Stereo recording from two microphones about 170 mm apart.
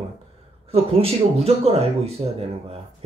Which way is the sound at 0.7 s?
35° right (ahead or behind).